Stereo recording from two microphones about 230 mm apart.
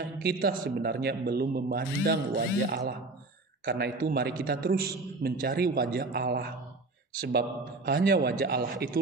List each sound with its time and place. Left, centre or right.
0.2 s a man's voice: right